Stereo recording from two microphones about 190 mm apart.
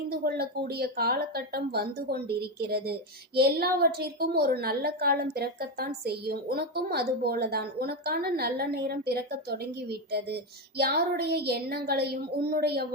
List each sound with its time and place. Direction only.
0.1 s speech: 55° right (ahead or behind)